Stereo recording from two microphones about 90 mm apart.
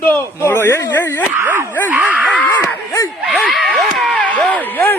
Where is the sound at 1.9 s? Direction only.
20° right (ahead or behind).